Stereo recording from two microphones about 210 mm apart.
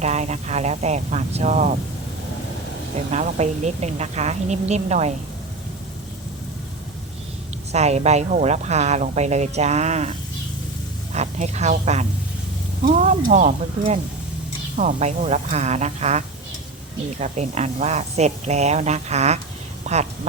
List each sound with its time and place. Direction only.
0.0 s a woman's voice: 30° right (ahead or behind)
3.1 s a woman's voice: 30° right (ahead or behind)
7.7 s a woman's voice: 30° right (ahead or behind)
19.8 s a sound: 30° right (ahead or behind)